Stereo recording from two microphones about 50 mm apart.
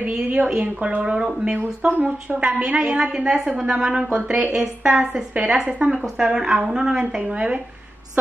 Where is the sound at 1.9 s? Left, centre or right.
Right.